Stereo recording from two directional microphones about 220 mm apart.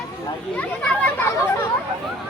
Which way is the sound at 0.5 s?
5° left (ahead or behind).